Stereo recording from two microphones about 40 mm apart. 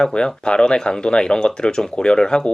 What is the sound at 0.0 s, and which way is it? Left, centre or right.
Speech, centre.